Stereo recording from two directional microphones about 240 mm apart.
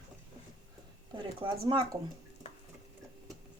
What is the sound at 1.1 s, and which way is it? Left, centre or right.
Speech, right.